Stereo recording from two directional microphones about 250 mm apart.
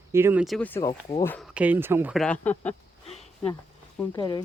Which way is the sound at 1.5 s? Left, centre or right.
Centre.